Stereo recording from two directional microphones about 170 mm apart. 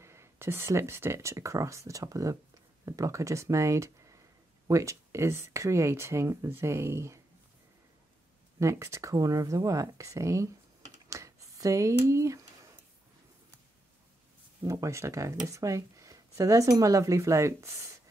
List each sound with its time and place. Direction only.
0.0 s speech: 15° right (ahead or behind)
8.5 s speech: 15° right (ahead or behind)
11.1 s a sound: 20° right (ahead or behind)
14.6 s speech: 15° right (ahead or behind)